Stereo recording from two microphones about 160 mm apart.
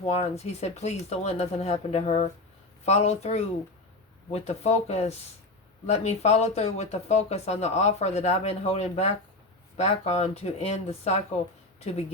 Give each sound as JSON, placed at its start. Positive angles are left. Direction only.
{"t": 0.1, "sound": "speech", "side_deg": 45}